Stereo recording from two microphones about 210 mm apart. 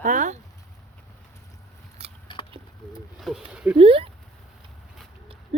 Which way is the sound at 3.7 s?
25° right (ahead or behind).